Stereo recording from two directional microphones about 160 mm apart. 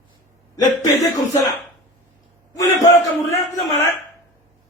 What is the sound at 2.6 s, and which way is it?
Speech, 20° left (ahead or behind).